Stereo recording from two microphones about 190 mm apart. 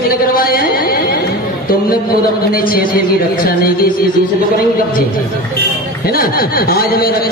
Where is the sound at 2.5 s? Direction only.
50° left (ahead or behind).